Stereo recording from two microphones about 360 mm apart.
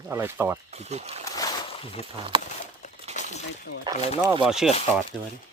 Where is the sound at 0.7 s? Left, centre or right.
Centre.